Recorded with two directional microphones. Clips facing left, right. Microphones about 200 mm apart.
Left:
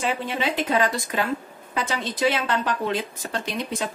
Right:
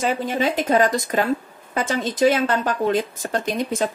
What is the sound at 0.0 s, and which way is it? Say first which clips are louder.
A woman's voice: right 4 dB; 45° right (ahead or behind).